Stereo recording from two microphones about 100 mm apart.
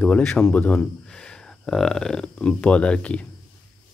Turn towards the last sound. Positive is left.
turn(degrees=10)  # may be behind; listen again after turning